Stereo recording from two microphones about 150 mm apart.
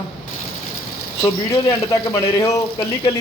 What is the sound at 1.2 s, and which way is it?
A man's voice, 20° left (ahead or behind).